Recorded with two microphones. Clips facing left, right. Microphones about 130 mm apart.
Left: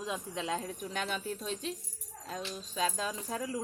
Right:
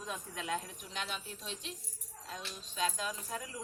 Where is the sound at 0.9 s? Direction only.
45° left (ahead or behind).